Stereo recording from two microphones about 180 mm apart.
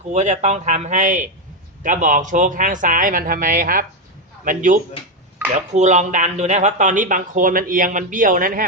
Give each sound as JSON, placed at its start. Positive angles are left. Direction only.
{"t": 0.0, "sound": "speech", "side_deg": -40}